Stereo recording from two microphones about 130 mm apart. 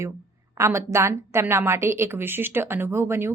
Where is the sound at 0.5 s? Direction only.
20° right (ahead or behind).